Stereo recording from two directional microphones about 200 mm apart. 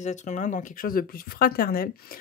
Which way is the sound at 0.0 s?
35° left (ahead or behind).